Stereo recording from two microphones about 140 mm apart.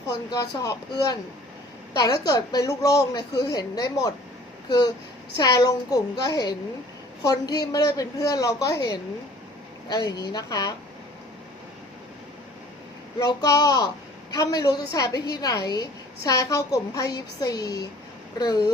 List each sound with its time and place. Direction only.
0.1 s a woman's voice: 30° left (ahead or behind)
13.1 s a woman's voice: 25° left (ahead or behind)